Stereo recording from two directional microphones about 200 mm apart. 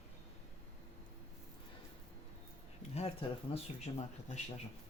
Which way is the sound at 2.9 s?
30° left (ahead or behind).